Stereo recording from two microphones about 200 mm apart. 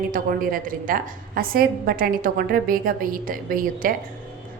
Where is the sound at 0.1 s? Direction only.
45° right (ahead or behind).